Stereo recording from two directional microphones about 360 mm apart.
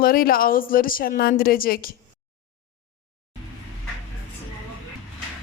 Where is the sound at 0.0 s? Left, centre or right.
Left.